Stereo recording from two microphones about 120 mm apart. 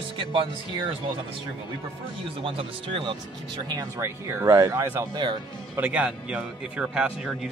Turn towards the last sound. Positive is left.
turn(degrees=-5)  # may be behind; listen again after turning